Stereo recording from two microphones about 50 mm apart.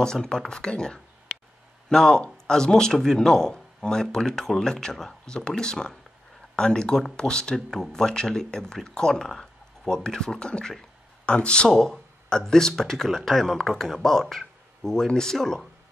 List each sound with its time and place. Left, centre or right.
0.0 s speech: centre
10.8 s a sound: left
11.7 s speech: centre